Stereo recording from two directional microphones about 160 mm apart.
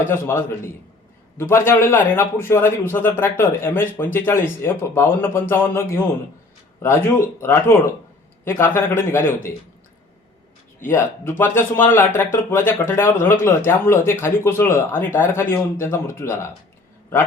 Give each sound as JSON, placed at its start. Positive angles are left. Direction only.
{"t": 0.0, "sound": "a man's voice", "side_deg": 15}
{"t": 10.8, "sound": "a man's voice", "side_deg": 15}